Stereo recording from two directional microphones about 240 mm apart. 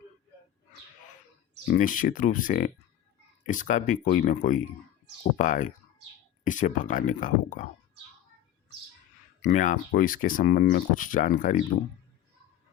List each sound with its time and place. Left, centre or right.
1.6 s speech: left
9.4 s speech: left